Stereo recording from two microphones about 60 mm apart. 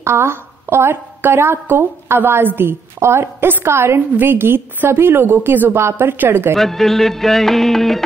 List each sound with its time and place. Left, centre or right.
0.0 s a woman's voice: right
5.8 s a woman's voice: right
6.5 s speech: centre